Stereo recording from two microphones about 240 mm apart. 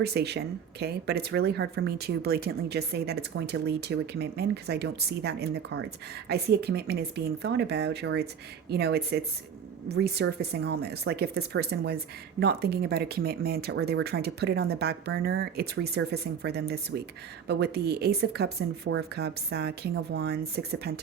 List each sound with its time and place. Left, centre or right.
0.0 s speech: right